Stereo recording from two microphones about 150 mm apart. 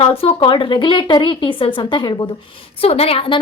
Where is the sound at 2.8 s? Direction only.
40° left (ahead or behind).